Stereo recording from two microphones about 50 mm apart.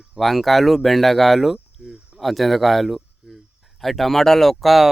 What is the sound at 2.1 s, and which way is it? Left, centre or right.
Speech, centre.